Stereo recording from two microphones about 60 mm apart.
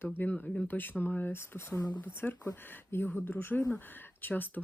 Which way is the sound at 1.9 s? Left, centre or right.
Left.